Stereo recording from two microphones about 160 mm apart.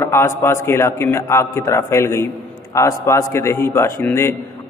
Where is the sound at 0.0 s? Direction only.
15° left (ahead or behind).